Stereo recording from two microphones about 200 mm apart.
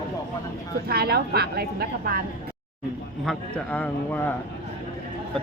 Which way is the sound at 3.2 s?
5° left (ahead or behind).